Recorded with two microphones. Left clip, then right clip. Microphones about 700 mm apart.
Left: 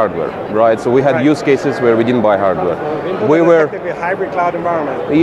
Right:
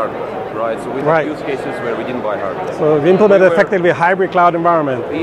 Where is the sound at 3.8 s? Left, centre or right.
Right.